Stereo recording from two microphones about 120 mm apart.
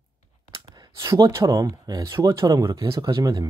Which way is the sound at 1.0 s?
25° right (ahead or behind).